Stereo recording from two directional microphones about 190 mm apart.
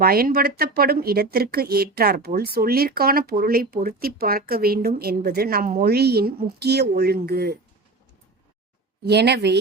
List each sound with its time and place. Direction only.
0.0 s speech: 50° right (ahead or behind)
9.0 s speech: 60° right (ahead or behind)